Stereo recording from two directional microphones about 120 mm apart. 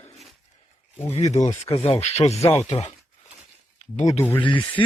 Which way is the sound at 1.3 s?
75° left (ahead or behind).